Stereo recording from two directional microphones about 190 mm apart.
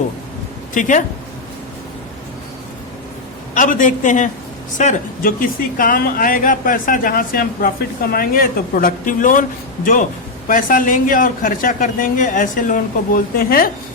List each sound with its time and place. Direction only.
0.7 s speech: 40° left (ahead or behind)
3.5 s speech: 45° left (ahead or behind)